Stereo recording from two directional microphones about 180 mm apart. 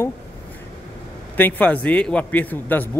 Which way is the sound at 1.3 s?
10° left (ahead or behind).